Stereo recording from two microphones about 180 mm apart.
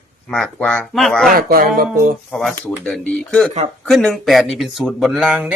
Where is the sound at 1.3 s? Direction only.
55° right (ahead or behind).